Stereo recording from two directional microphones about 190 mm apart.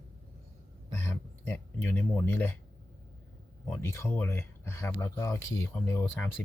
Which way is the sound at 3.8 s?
15° left (ahead or behind).